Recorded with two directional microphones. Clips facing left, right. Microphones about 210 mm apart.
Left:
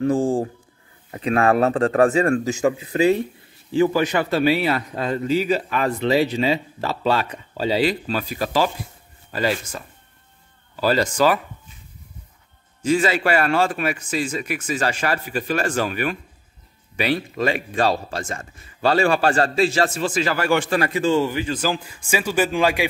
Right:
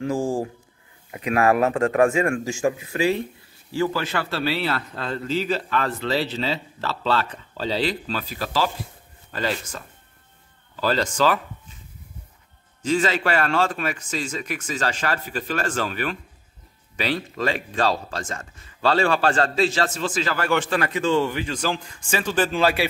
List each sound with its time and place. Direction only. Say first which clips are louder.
0.0 s speech: left 4 dB; 35° left (ahead or behind)
3.7 s a man's voice: left 6 dB; 15° left (ahead or behind)
12.8 s a man's voice: left 3 dB; 10° left (ahead or behind)